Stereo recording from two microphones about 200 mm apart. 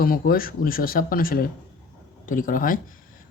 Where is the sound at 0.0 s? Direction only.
45° left (ahead or behind).